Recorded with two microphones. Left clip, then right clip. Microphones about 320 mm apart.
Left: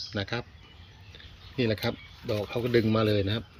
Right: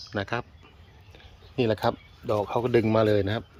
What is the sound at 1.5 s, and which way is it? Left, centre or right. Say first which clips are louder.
Speech: right 4 dB; centre.